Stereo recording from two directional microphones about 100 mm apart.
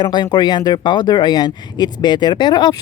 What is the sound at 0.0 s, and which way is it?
Speech, 45° left (ahead or behind).